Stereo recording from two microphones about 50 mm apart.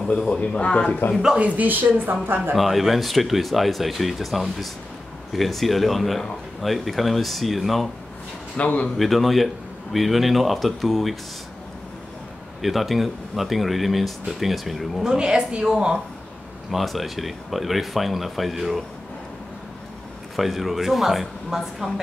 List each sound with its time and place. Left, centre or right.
0.3 s speech: left
1.4 s speech: right
2.5 s speech: centre
8.5 s speech: left
8.9 s speech: centre
12.6 s speech: centre
15.0 s a woman's voice: centre
16.7 s speech: centre
20.3 s speech: centre